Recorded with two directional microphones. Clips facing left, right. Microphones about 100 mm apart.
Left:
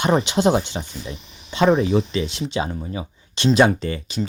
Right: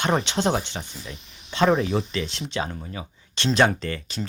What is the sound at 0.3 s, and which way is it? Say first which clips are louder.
Speech: left 5 dB; 10° left (ahead or behind).